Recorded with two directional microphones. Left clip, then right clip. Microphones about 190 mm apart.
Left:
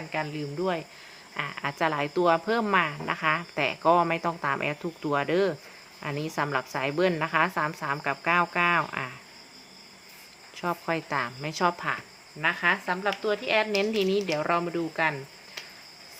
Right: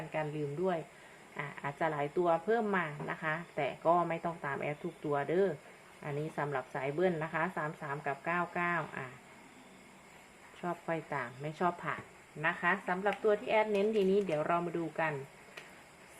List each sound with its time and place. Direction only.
0.1 s speech: 30° left (ahead or behind)
10.6 s speech: 45° left (ahead or behind)